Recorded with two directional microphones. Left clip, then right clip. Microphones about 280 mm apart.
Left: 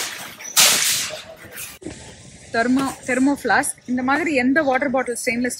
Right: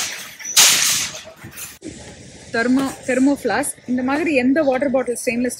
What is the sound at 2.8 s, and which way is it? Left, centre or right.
Speech, centre.